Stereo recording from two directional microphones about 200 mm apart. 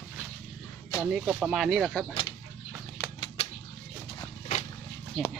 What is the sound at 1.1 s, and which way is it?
Speech, centre (ahead or behind).